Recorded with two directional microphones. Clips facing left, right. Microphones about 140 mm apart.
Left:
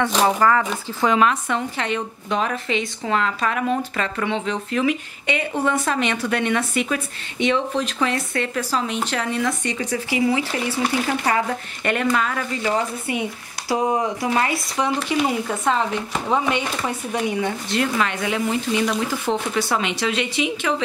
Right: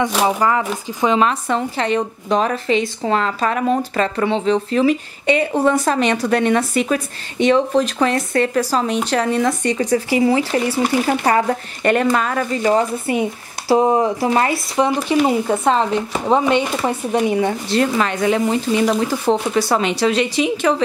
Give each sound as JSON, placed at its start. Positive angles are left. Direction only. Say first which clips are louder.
{"t": 0.0, "sound": "speech", "louder": "right 1 dB", "side_deg": -10}
{"t": 1.0, "sound": "a woman's voice", "louder": "right 2 dB", "side_deg": -30}